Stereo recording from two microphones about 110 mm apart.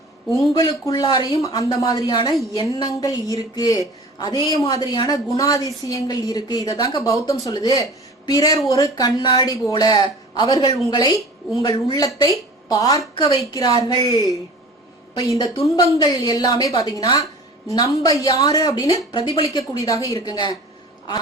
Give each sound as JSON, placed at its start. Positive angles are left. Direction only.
{"t": 0.5, "sound": "a woman's voice", "side_deg": 35}
{"t": 11.9, "sound": "a woman's voice", "side_deg": 35}
{"t": 18.9, "sound": "speech", "side_deg": 50}
{"t": 19.5, "sound": "a woman's voice", "side_deg": 30}